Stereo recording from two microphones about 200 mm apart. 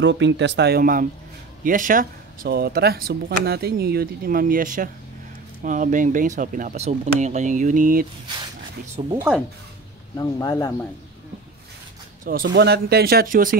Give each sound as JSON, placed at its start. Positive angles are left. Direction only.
{"t": 0.0, "sound": "speech", "side_deg": -65}
{"t": 9.0, "sound": "speech", "side_deg": -25}
{"t": 10.1, "sound": "speech", "side_deg": 20}
{"t": 12.3, "sound": "speech", "side_deg": -50}